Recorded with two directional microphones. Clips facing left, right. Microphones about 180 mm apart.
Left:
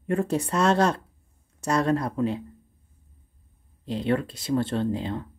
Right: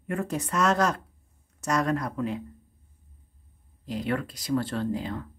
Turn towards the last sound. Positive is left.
turn(degrees=25)  # may be behind; listen again after turning